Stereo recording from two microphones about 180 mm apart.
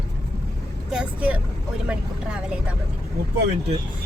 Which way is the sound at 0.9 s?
5° right (ahead or behind).